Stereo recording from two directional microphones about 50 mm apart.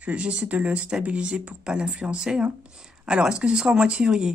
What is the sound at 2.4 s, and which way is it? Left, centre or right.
Speech, right.